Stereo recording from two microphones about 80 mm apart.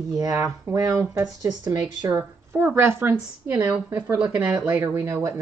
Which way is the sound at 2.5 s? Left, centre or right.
Right.